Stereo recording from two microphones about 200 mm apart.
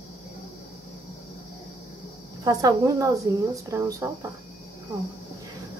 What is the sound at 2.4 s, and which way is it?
A woman's voice, 20° right (ahead or behind).